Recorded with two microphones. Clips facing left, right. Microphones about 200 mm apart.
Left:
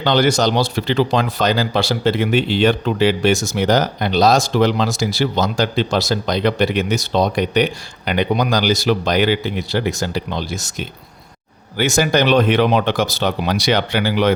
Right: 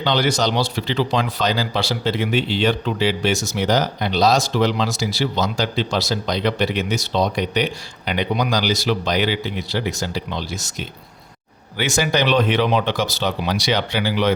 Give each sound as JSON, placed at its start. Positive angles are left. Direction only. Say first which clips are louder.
{"t": 0.0, "sound": "speech", "louder": "left 4 dB", "side_deg": 50}